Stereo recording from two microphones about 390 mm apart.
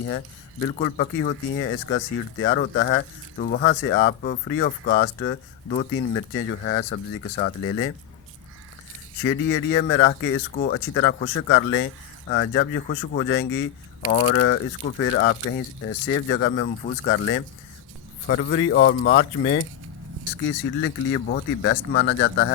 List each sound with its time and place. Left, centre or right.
0.8 s speech: left
9.2 s speech: left
20.8 s speech: left